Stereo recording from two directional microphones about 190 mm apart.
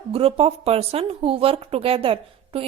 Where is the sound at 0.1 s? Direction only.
30° right (ahead or behind).